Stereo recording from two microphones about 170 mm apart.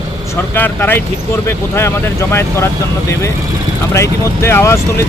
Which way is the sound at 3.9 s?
15° left (ahead or behind).